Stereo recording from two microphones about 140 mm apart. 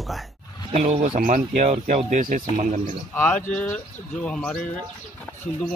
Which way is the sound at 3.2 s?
10° left (ahead or behind).